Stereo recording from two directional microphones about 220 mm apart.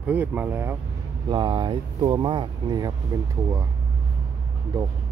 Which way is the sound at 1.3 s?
20° right (ahead or behind).